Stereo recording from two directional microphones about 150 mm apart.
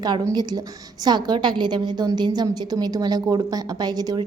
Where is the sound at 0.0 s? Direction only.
25° right (ahead or behind).